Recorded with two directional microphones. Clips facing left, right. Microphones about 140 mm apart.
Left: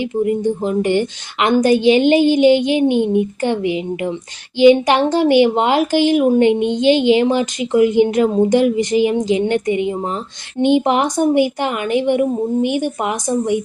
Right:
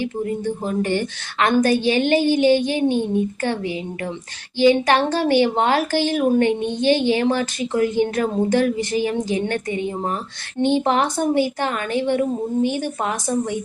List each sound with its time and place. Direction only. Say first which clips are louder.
0.0 s a woman's voice: left 6 dB; 15° left (ahead or behind)